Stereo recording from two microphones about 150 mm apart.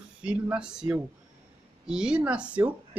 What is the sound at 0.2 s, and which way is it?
Speech, 5° right (ahead or behind).